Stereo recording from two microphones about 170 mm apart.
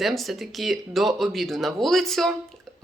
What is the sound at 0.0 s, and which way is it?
Speech, centre (ahead or behind).